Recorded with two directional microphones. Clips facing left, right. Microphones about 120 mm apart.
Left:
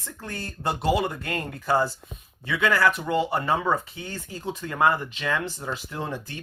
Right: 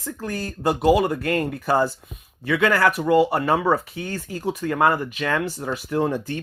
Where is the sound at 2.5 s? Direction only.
15° right (ahead or behind).